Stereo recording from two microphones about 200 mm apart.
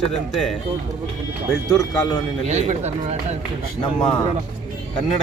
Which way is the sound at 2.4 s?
35° right (ahead or behind).